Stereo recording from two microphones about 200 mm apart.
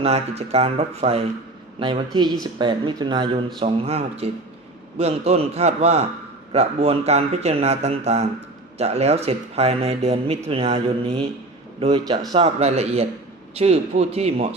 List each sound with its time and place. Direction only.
0.0 s a man's voice: 30° right (ahead or behind)